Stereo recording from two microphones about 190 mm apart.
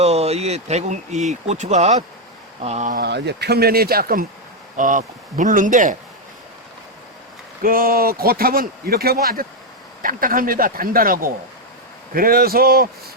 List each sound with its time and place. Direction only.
0.0 s speech: 35° right (ahead or behind)
3.0 s speech: 60° right (ahead or behind); by 6.0 s 40° right (ahead or behind)
7.6 s speech: 50° right (ahead or behind)